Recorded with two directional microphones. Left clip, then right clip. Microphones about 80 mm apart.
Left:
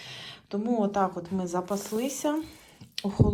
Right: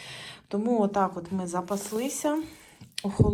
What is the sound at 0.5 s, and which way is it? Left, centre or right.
A woman's voice, left.